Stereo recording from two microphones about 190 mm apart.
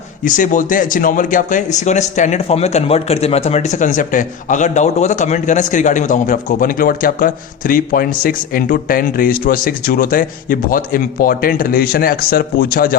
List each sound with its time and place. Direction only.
0.3 s speech: 45° left (ahead or behind)